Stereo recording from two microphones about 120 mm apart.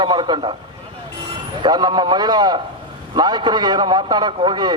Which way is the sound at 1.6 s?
35° right (ahead or behind).